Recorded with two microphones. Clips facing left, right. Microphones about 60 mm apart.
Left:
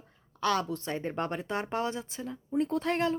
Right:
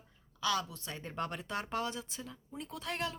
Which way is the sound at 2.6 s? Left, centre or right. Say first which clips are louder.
Left 11 dB; left.